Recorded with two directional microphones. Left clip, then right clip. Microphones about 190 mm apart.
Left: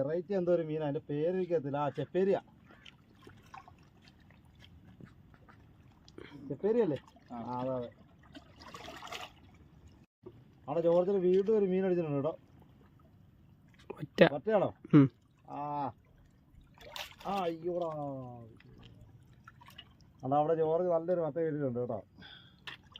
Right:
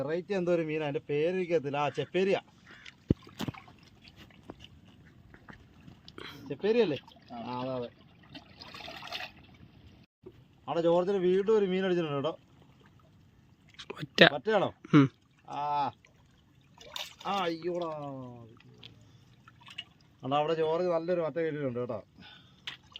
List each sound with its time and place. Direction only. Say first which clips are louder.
0.0 s speech: right 1 dB; 40° right (ahead or behind)
6.1 s a sound: right 6 dB; 5° left (ahead or behind)
6.5 s speech: right 3 dB; 25° right (ahead or behind)
8.3 s trickle: right 3 dB; 5° left (ahead or behind)
10.7 s speech: right 1 dB; 30° right (ahead or behind)
13.7 s a sound: right 3 dB; 5° left (ahead or behind)
14.3 s speech: right 2 dB; 30° right (ahead or behind)
14.8 s speech: right 1 dB; 5° left (ahead or behind)
15.4 s speech: right 6 dB; 30° right (ahead or behind)
16.7 s trickle: right 3 dB; 10° left (ahead or behind)
17.2 s speech: right 3 dB; 30° right (ahead or behind)
20.2 s speech: right 1 dB; 30° right (ahead or behind)